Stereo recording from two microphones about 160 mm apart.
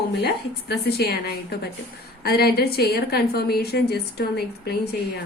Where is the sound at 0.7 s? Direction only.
85° left.